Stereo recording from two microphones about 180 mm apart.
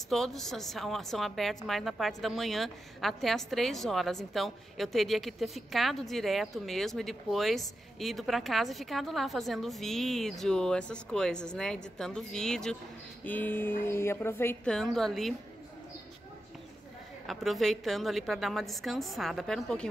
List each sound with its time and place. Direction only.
0.1 s a woman's voice: centre (ahead or behind)
17.3 s a woman's voice: centre (ahead or behind)